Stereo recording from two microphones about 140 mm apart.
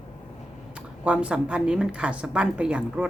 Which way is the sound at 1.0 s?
10° right (ahead or behind).